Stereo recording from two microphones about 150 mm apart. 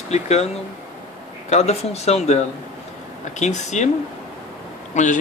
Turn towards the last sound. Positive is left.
turn(degrees=55)  # may be behind; listen again after turning